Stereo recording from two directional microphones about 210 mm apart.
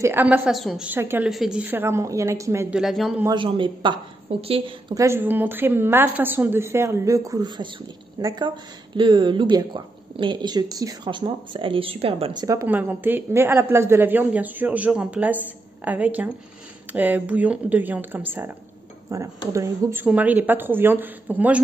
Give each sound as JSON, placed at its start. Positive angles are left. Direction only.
{"t": 0.0, "sound": "a woman's voice", "side_deg": -10}
{"t": 2.8, "sound": "a man's voice", "side_deg": 0}
{"t": 3.3, "sound": "a woman's voice", "side_deg": -25}